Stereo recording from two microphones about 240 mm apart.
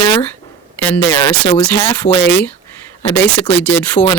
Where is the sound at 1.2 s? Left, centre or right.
Centre.